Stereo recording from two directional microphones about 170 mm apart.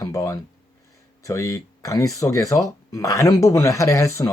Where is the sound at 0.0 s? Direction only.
15° left (ahead or behind).